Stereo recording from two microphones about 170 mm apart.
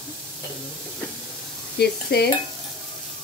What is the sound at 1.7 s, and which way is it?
Stir, 75° left (ahead or behind).